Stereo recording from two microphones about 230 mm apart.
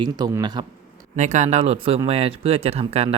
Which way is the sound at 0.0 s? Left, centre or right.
Centre.